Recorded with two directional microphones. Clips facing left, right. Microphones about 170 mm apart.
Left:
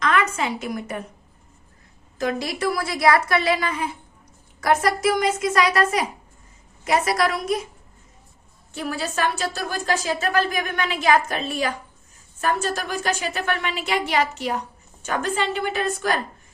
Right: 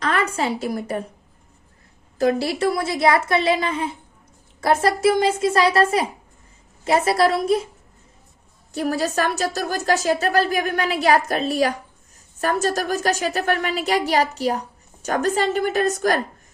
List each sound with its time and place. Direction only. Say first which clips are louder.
0.0 s a woman's voice: even; 35° right (ahead or behind)
2.1 s a woman's voice: right 5 dB; 35° right (ahead or behind)
8.7 s a woman's voice: right 5 dB; 40° right (ahead or behind)